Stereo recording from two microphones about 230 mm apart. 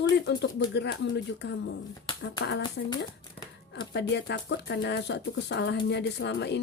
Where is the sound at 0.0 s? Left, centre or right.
Left.